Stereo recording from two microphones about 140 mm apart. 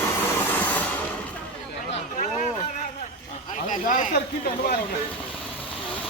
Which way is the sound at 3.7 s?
70° left (ahead or behind).